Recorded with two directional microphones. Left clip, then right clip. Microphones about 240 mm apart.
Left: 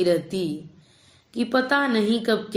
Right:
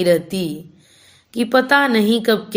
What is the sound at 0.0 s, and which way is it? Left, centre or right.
A woman's voice, right.